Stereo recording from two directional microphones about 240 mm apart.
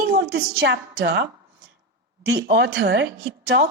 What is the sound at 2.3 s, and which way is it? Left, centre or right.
A woman's voice, right.